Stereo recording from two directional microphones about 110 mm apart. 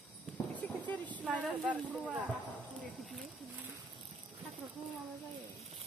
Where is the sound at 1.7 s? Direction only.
15° right (ahead or behind).